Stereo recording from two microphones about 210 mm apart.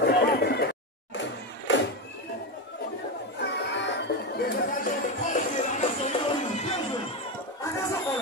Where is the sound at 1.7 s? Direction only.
60° left (ahead or behind).